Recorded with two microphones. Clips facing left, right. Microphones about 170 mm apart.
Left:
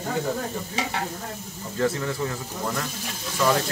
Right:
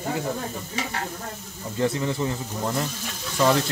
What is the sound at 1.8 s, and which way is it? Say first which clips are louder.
Speech: right 1 dB; 20° right (ahead or behind).